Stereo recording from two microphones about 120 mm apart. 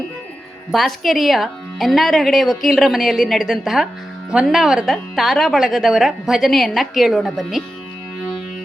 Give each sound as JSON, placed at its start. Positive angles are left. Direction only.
{"t": 0.7, "sound": "a woman's voice", "side_deg": 0}